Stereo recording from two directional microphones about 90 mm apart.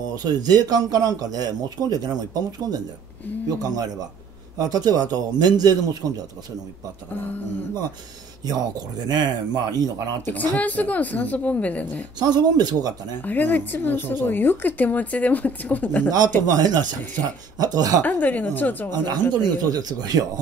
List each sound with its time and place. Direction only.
0.1 s speech: 50° right (ahead or behind)
7.2 s speech: 20° left (ahead or behind)
8.5 s speech: 45° right (ahead or behind)
10.2 s a woman's voice: 20° left (ahead or behind)
12.2 s speech: 50° right (ahead or behind)
13.2 s speech: 20° left (ahead or behind)
16.1 s speech: 45° right (ahead or behind)
18.0 s speech: 20° left (ahead or behind)
19.6 s speech: 50° right (ahead or behind)